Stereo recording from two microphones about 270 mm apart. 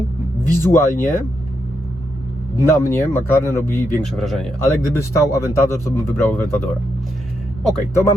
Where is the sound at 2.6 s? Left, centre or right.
Centre.